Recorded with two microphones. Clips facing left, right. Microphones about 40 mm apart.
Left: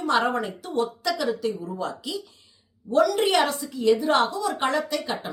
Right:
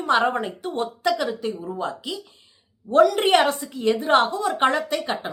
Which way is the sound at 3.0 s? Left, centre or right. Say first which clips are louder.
Right 2 dB; right.